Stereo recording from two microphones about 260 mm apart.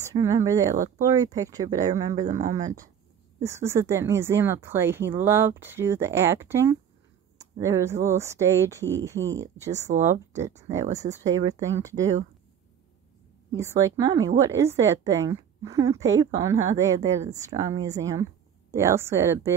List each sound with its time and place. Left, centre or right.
0.0 s a woman's voice: centre
9.8 s speech: right
11.2 s a woman's voice: centre
13.6 s a woman's voice: centre